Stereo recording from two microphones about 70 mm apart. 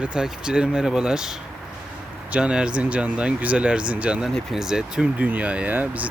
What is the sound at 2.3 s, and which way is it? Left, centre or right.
Speech, centre.